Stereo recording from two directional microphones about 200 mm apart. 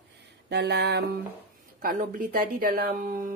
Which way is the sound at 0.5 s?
60° right (ahead or behind).